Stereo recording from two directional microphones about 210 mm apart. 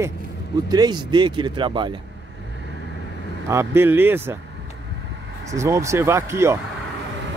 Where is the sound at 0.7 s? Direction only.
20° right (ahead or behind).